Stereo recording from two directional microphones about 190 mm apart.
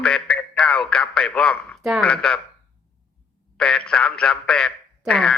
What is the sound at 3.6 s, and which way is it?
A man's voice, 5° left (ahead or behind).